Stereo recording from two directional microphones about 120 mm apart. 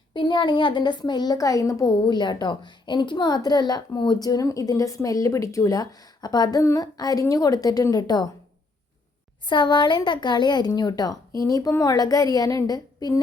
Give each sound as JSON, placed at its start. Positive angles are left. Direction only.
{"t": 0.1, "sound": "a woman's voice", "side_deg": 40}
{"t": 9.5, "sound": "a woman's voice", "side_deg": 40}